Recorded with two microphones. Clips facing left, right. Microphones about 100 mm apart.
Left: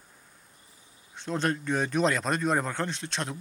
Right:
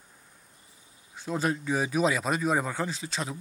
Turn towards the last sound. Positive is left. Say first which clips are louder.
# even
turn(degrees=0)  # may be behind; listen again after turning